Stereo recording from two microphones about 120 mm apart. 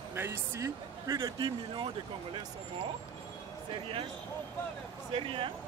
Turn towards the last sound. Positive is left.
turn(degrees=-45)  # may be behind; listen again after turning